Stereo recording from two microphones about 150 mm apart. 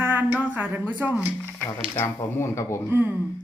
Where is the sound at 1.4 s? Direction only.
5° left (ahead or behind).